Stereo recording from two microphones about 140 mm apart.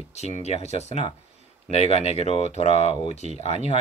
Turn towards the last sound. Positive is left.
turn(degrees=50)  # may be behind; listen again after turning